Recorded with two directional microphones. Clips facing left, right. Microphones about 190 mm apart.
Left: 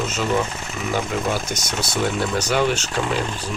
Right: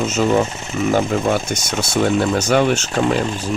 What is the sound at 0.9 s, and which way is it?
Speech, 50° right (ahead or behind).